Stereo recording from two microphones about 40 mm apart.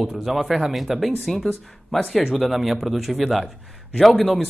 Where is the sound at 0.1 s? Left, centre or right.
Centre.